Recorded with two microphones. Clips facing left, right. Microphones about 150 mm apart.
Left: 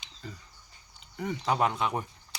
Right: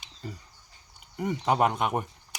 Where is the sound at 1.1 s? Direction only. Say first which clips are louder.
Right 3 dB; 15° right (ahead or behind).